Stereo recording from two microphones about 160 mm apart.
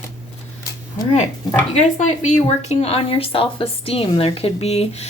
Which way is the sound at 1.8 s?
45° left (ahead or behind).